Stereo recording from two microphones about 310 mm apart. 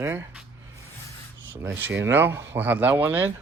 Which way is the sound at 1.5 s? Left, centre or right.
Centre.